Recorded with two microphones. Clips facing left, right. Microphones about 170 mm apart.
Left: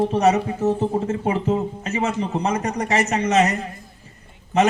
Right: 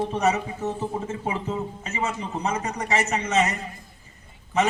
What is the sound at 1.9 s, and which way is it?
Speech, 65° left (ahead or behind).